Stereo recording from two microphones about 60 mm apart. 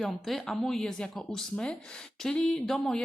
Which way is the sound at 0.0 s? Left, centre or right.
Centre.